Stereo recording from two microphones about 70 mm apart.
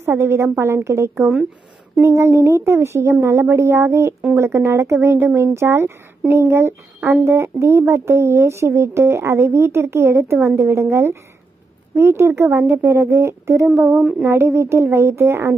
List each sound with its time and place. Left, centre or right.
0.0 s speech: right
13.7 s a sound: right
14.2 s speech: right